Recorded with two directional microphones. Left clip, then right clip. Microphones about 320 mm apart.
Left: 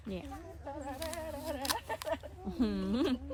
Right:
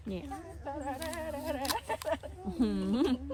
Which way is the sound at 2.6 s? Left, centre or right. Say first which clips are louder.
Right 3 dB; centre.